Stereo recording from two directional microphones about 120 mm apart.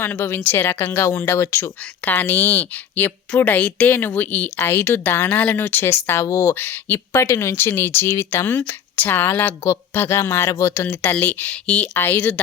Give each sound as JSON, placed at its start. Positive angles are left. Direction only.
{"t": 0.0, "sound": "speech", "side_deg": 20}